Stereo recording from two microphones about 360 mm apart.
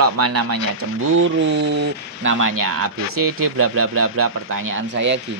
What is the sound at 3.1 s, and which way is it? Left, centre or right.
Speech, right.